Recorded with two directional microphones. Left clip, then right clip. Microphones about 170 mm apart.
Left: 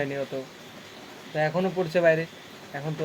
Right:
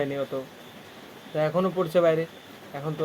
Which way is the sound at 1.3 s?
20° right (ahead or behind).